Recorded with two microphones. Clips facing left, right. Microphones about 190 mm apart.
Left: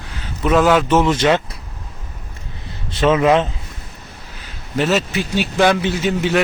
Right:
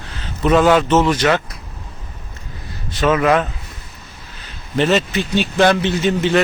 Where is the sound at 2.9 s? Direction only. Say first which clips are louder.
Left 1 dB; 25° left (ahead or behind).